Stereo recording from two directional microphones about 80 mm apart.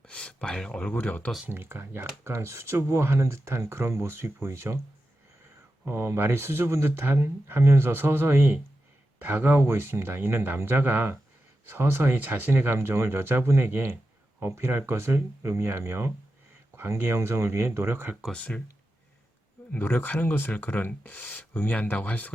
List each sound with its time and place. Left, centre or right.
0.1 s speech: centre
1.5 s speech: right
5.8 s speech: right
18.3 s speech: centre
19.7 s speech: left